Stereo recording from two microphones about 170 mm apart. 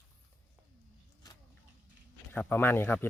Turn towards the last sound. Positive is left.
turn(degrees=10)  # may be behind; listen again after turning